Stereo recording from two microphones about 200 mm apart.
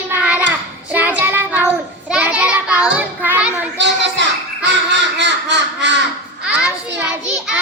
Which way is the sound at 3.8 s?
60° right (ahead or behind).